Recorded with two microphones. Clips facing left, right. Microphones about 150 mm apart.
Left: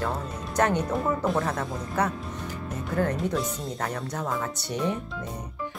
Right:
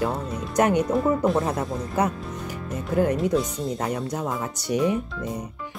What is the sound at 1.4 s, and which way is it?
Speech, 20° right (ahead or behind).